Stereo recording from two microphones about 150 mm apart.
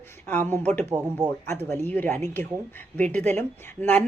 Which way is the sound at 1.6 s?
10° left (ahead or behind).